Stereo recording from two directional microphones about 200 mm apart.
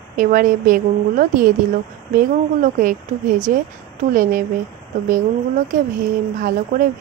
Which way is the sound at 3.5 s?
45° right (ahead or behind).